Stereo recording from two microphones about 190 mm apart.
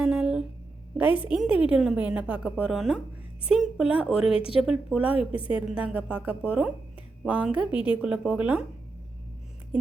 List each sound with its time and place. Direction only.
0.0 s a sound: 5° right (ahead or behind)
1.3 s a woman's voice: 5° right (ahead or behind)
4.4 s speech: 30° left (ahead or behind)
4.6 s a woman's voice: 5° right (ahead or behind)